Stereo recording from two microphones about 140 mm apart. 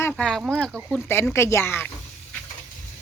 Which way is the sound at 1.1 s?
20° left (ahead or behind).